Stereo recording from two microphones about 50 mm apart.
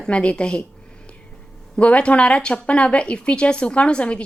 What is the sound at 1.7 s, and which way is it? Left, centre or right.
A woman's voice, left.